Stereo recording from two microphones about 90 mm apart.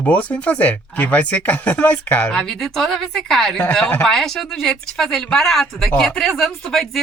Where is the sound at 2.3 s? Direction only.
5° left (ahead or behind).